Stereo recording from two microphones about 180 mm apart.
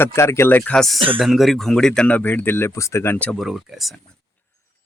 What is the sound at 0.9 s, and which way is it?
Speech, 30° right (ahead or behind).